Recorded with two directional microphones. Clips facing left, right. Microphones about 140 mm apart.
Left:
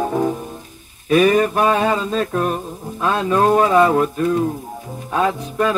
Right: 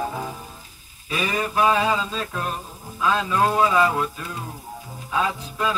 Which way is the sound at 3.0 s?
55° left (ahead or behind).